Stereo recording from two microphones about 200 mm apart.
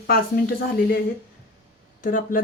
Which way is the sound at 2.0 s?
45° left (ahead or behind).